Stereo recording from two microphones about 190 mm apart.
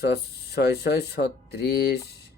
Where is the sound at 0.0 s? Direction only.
60° left (ahead or behind).